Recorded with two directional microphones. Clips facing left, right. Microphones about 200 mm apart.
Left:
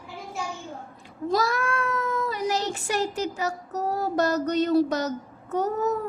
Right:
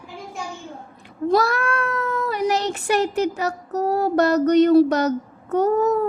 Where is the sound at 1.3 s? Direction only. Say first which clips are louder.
Right 5 dB; 65° right (ahead or behind).